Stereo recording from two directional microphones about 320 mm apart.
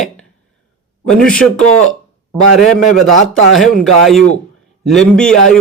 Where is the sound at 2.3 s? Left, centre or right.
Centre.